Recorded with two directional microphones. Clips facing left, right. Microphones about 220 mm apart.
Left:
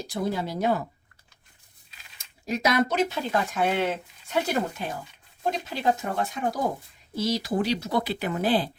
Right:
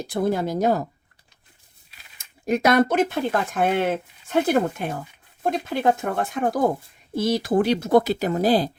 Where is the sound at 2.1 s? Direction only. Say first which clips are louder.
Right 7 dB; 55° right (ahead or behind).